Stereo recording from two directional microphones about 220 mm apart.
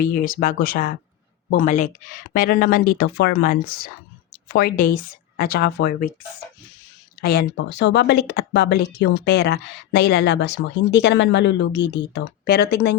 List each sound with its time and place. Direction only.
0.0 s speech: 40° left (ahead or behind)
7.2 s speech: 45° left (ahead or behind)